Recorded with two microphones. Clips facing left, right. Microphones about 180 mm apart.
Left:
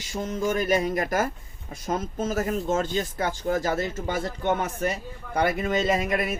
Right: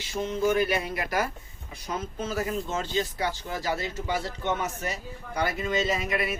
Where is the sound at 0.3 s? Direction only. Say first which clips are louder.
Even; 45° left (ahead or behind).